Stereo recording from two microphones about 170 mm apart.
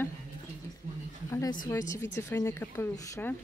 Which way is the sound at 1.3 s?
20° left (ahead or behind).